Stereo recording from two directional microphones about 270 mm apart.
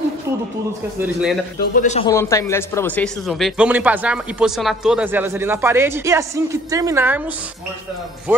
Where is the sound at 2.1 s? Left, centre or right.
Centre.